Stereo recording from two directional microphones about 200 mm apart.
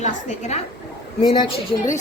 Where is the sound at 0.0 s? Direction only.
35° left (ahead or behind).